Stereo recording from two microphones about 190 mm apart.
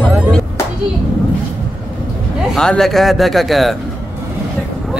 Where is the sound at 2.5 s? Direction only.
Centre (ahead or behind).